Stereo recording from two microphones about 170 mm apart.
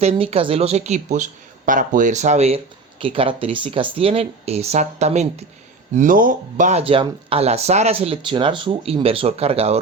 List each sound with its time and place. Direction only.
0.0 s speech: 35° right (ahead or behind)
5.9 s speech: 50° right (ahead or behind)